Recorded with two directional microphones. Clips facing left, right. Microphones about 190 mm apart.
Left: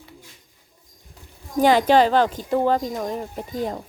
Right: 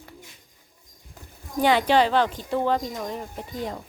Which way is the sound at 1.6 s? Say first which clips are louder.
Left 4 dB; 40° left (ahead or behind).